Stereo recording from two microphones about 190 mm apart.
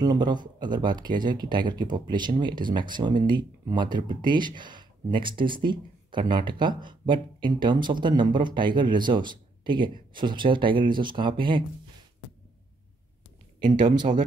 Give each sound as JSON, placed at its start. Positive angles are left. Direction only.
{"t": 0.0, "sound": "speech", "side_deg": -20}
{"t": 13.7, "sound": "speech", "side_deg": -25}